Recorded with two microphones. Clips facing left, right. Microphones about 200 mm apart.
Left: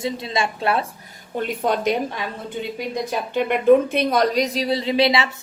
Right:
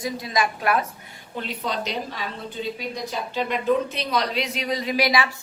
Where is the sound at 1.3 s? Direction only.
50° left (ahead or behind); by 5.3 s 25° left (ahead or behind).